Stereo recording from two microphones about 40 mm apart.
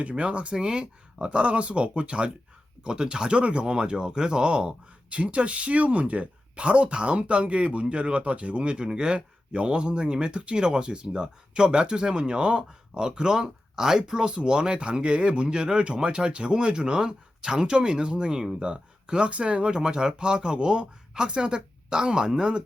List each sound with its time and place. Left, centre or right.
0.0 s speech: right